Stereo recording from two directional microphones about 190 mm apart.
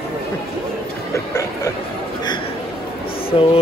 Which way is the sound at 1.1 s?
15° left (ahead or behind).